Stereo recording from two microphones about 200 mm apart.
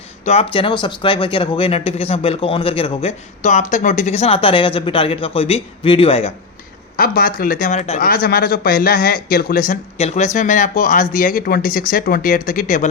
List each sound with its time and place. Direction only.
0.3 s speech: 30° left (ahead or behind)
6.9 s speech: 45° left (ahead or behind)
7.9 s speech: 45° left (ahead or behind)
10.0 s speech: 35° left (ahead or behind)